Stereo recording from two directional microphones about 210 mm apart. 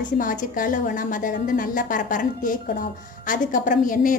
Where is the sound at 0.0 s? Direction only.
40° left (ahead or behind).